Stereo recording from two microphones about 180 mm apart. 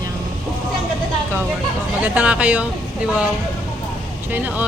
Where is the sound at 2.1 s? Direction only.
5° right (ahead or behind).